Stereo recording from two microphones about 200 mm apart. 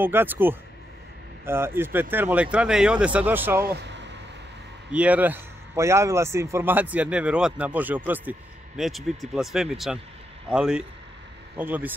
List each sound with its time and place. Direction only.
0.0 s a man's voice: 10° right (ahead or behind)
3.6 s vehicle: 55° right (ahead or behind)
4.9 s a man's voice: 5° right (ahead or behind)